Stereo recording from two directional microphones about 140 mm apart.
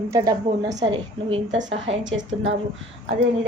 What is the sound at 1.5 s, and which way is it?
Speech, 60° right (ahead or behind).